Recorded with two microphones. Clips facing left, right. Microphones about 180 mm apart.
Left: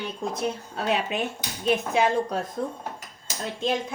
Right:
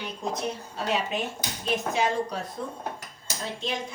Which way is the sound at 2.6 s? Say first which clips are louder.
Left 5 dB; 40° left (ahead or behind).